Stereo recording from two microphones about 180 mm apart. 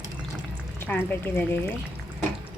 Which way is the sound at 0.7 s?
10° left (ahead or behind).